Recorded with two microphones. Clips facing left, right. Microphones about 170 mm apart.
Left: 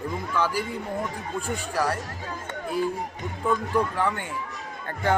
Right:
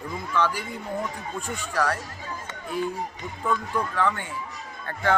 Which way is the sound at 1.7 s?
10° left (ahead or behind).